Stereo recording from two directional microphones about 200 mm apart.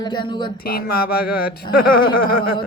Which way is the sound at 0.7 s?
45° left (ahead or behind).